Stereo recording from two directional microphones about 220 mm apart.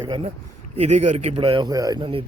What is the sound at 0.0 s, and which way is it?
Speech, 25° right (ahead or behind).